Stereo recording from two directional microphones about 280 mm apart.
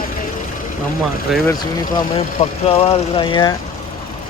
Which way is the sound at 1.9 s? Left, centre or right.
Left.